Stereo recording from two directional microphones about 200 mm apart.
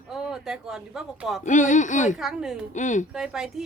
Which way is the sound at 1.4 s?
40° left (ahead or behind).